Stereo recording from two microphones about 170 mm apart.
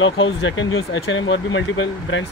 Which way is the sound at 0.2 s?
90° left.